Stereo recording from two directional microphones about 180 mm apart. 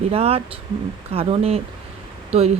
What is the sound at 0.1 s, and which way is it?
Speech, 35° right (ahead or behind).